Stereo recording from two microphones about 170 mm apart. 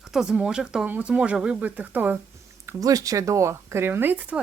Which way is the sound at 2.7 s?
20° right (ahead or behind).